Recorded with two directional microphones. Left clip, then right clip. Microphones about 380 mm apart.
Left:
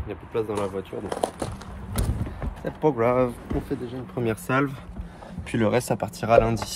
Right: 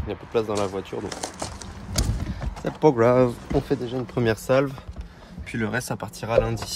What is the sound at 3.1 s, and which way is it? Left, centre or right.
Speech, centre.